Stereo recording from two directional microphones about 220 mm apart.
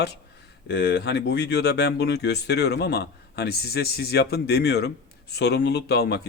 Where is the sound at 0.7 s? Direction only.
50° left (ahead or behind).